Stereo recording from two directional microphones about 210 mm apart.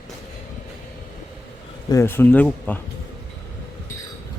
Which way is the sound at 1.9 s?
10° left (ahead or behind).